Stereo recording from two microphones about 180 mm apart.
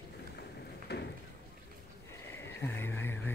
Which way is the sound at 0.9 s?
65° left (ahead or behind).